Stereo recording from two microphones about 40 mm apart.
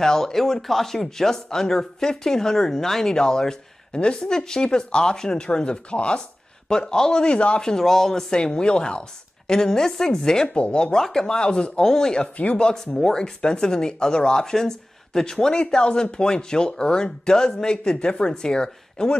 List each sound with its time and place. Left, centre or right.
0.0 s speech: centre
7.7 s speech: centre
8.3 s speech: left
10.5 s speech: left; by 11.3 s centre
11.3 s speech: left